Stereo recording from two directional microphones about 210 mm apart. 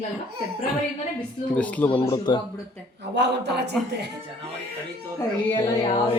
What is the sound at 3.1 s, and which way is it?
Speech, 55° right (ahead or behind).